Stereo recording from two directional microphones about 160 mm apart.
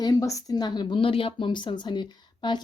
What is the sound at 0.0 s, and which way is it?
Speech, 20° left (ahead or behind).